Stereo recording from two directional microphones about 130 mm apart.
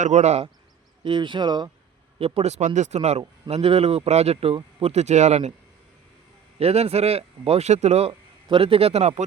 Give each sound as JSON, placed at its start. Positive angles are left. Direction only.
{"t": 0.0, "sound": "speech", "side_deg": -60}
{"t": 1.0, "sound": "speech", "side_deg": -40}
{"t": 2.1, "sound": "speech", "side_deg": -50}
{"t": 6.6, "sound": "speech", "side_deg": -50}